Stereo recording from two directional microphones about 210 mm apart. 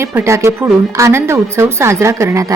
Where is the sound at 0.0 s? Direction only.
10° right (ahead or behind).